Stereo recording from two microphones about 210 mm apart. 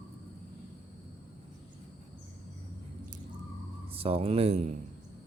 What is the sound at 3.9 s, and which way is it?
Speech, 25° right (ahead or behind).